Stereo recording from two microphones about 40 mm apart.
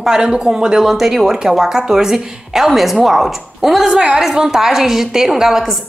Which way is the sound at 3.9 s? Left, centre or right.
Right.